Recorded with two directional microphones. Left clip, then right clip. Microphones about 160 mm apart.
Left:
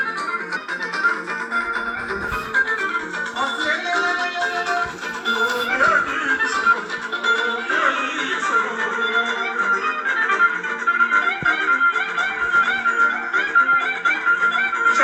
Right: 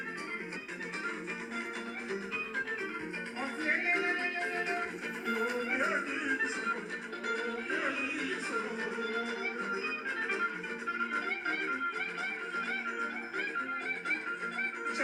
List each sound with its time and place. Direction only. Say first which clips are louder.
5.7 s music: left 17 dB; 35° left (ahead or behind)